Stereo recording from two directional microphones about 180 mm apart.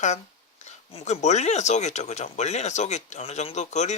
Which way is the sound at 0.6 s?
35° left (ahead or behind).